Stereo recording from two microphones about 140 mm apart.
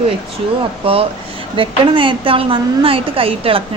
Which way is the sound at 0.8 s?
40° right (ahead or behind).